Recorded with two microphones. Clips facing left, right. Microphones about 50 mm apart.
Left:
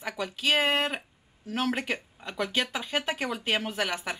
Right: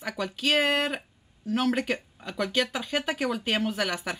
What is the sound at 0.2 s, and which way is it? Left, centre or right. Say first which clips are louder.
Speech: right 1 dB; centre.